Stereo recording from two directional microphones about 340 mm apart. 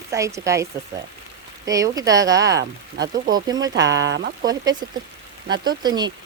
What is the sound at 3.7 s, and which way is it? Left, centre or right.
Speech, right.